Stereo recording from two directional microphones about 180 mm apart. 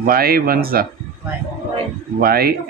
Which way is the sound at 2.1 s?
55° right (ahead or behind).